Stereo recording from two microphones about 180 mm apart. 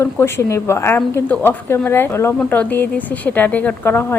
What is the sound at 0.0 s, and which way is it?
Speech, 15° left (ahead or behind).